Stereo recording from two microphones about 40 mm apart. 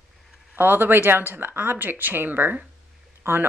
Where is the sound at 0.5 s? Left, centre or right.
Right.